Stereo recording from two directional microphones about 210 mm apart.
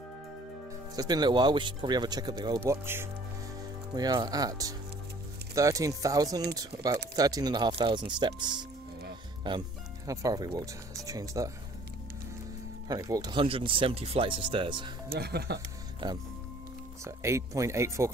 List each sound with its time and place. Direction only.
0.9 s speech: 20° right (ahead or behind)
12.8 s speech: 15° right (ahead or behind)
15.0 s speech: 50° right (ahead or behind)
16.0 s speech: 20° right (ahead or behind)